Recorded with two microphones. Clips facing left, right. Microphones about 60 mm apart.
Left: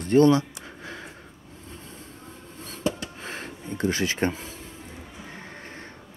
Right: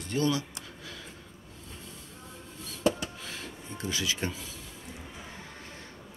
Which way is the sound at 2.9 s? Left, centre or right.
Left.